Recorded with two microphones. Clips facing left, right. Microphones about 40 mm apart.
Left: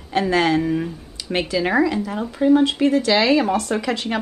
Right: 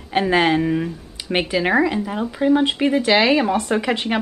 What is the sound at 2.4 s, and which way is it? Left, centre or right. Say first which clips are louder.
Speech: left 2 dB; right.